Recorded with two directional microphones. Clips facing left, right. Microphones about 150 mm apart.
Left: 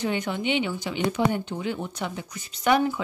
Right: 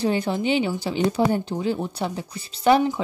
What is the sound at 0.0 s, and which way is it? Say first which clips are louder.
Speech: right 4 dB; 35° right (ahead or behind).